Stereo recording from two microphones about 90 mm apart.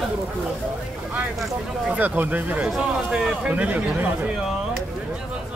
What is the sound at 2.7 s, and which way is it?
Speech, 5° right (ahead or behind).